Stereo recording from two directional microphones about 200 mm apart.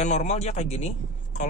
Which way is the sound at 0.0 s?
35° left (ahead or behind).